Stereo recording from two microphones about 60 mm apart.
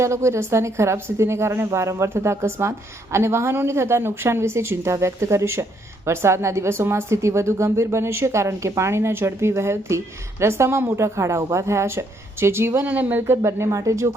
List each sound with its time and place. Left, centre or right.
0.0 s a woman's voice: right
12.9 s speech: right
13.2 s a woman's voice: right